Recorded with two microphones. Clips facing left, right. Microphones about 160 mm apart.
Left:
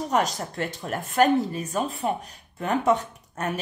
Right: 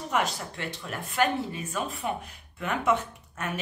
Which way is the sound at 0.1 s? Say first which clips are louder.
Left 2 dB; 40° left (ahead or behind).